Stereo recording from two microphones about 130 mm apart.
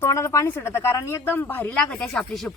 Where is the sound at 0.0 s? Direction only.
25° left (ahead or behind).